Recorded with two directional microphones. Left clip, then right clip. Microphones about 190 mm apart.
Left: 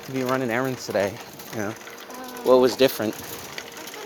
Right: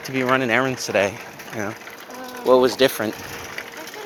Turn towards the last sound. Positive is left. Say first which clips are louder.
# right 2 dB
turn(degrees=10)  # may be behind; listen again after turning